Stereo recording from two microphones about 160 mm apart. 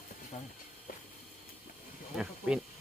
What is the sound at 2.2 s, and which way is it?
Speech, 5° right (ahead or behind).